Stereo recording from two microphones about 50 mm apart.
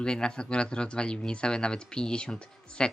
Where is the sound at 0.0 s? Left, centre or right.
Centre.